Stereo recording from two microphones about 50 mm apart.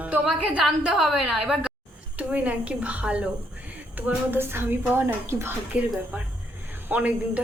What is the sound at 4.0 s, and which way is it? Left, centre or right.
Speech, right.